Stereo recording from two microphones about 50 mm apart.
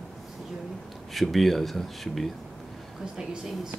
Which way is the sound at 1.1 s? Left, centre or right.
Centre.